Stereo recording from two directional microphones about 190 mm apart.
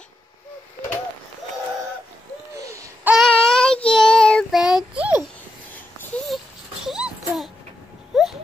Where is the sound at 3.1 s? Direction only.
5° left (ahead or behind).